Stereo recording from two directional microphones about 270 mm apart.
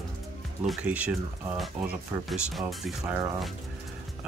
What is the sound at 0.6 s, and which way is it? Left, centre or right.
Speech, centre.